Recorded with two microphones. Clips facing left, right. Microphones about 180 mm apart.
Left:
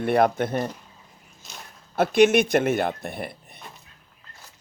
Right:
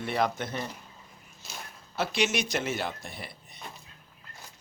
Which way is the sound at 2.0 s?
55° left (ahead or behind).